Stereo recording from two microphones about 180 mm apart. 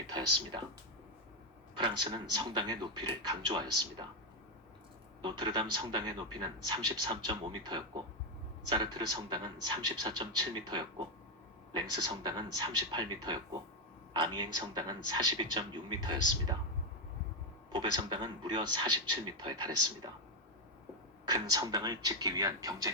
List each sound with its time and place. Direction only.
1.7 s a man's voice: 25° right (ahead or behind)
5.2 s a man's voice: 25° right (ahead or behind)
17.7 s a man's voice: 25° right (ahead or behind)
21.2 s a man's voice: 20° right (ahead or behind)